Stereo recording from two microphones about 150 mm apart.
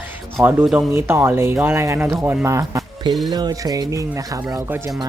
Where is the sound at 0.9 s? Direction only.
15° right (ahead or behind).